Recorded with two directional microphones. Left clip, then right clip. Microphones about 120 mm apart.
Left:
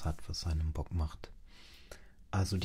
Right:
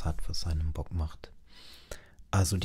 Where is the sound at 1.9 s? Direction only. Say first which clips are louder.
Right 7 dB; 60° right (ahead or behind).